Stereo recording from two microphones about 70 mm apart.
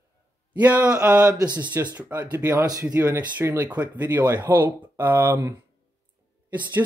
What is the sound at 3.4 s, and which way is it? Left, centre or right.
Speech, right.